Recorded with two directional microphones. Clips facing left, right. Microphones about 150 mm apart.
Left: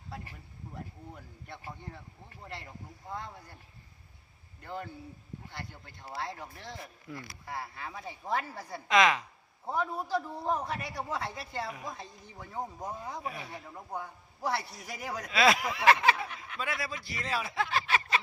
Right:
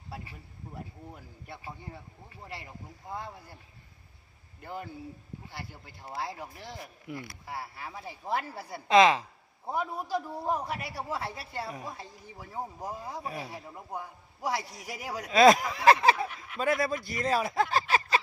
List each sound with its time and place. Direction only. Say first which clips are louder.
1.5 s speech: right 1 dB; 5° right (ahead or behind)
4.6 s a man's voice: right 1 dB; 10° right (ahead or behind)
8.9 s speech: right 5 dB; 30° right (ahead or behind)
9.6 s a man's voice: even; 10° right (ahead or behind)
13.2 s speech: right 2 dB; 35° right (ahead or behind)
13.5 s a man's voice: right 1 dB; 10° right (ahead or behind)
15.3 s speech: right 7 dB; 40° right (ahead or behind)